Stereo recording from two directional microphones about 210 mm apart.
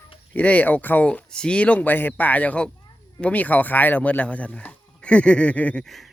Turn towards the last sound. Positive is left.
turn(degrees=0)  # may be behind; listen again after turning